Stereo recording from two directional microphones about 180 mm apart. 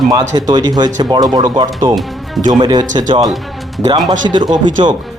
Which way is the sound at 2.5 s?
25° right (ahead or behind).